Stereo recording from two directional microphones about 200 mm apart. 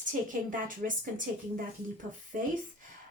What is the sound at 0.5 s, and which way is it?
Speech, 40° right (ahead or behind).